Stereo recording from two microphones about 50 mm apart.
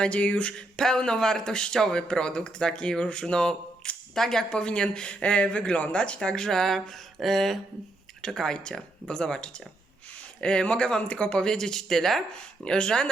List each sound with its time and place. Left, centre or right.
0.0 s speech: left
0.8 s speech: centre